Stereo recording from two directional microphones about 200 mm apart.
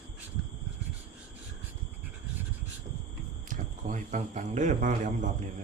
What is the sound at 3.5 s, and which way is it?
A man's voice, 40° right (ahead or behind).